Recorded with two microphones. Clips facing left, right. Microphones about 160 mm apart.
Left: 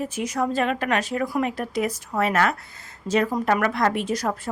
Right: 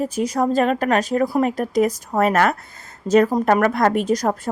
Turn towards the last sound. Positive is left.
turn(degrees=-40)  # may be behind; listen again after turning